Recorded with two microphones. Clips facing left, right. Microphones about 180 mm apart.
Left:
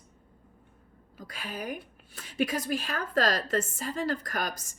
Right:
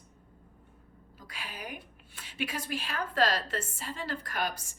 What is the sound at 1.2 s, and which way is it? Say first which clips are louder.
A woman's voice: left 5 dB; 45° left (ahead or behind).